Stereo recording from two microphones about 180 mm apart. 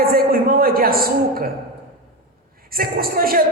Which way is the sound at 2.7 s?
55° right (ahead or behind).